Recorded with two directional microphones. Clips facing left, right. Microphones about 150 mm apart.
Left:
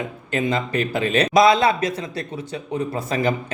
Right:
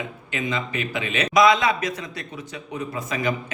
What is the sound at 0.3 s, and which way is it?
A man's voice, 35° left (ahead or behind).